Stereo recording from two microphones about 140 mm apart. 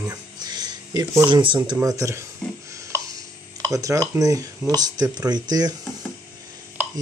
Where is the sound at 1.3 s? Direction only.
35° right (ahead or behind).